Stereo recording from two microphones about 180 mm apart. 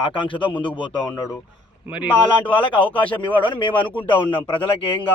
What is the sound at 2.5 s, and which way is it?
Speech, 30° left (ahead or behind).